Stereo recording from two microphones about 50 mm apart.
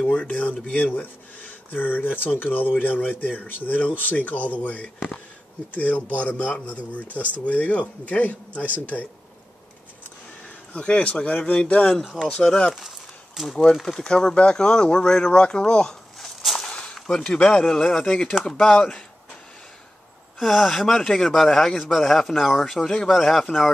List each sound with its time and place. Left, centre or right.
0.1 s speech: left
10.8 s speech: centre
12.0 s a man's voice: centre
12.3 s speech: centre
16.6 s a sound: centre
17.0 s speech: centre
20.3 s a man's voice: centre